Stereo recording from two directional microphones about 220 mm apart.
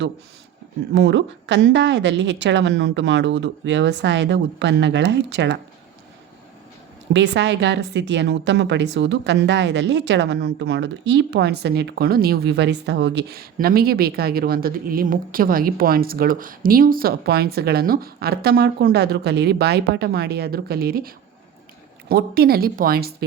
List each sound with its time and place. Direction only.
0.9 s speech: 55° right (ahead or behind)
7.1 s a woman's voice: 50° right (ahead or behind)
22.1 s a woman's voice: 45° right (ahead or behind)